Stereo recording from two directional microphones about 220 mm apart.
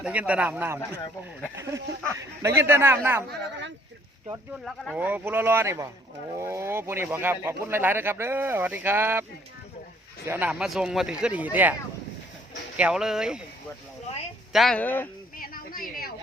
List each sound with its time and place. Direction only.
0.0 s speech: 5° right (ahead or behind)
3.2 s speech: 50° right (ahead or behind)
4.6 s speech: 5° right (ahead or behind)
10.2 s speech: 10° right (ahead or behind)
14.5 s speech: centre (ahead or behind)
15.4 s a sound: 40° left (ahead or behind)